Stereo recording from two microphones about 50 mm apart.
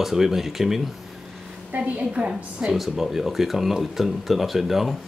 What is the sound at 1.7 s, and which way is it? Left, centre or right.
Speech, right.